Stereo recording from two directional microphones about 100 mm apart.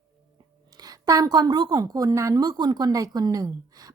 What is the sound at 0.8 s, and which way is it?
A woman's voice, 35° right (ahead or behind).